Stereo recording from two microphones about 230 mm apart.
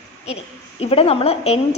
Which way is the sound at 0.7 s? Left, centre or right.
Left.